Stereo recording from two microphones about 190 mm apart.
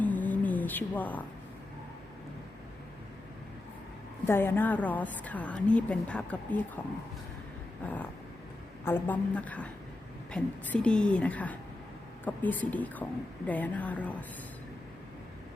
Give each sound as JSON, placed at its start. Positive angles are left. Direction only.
{"t": 0.0, "sound": "a sound", "side_deg": 10}
{"t": 4.3, "sound": "a woman's voice", "side_deg": 10}
{"t": 8.8, "sound": "a woman's voice", "side_deg": 10}